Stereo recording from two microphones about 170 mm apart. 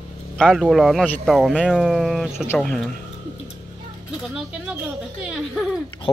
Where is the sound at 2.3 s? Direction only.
15° left (ahead or behind).